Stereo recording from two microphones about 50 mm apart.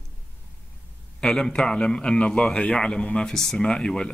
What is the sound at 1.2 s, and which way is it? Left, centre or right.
Speech, centre.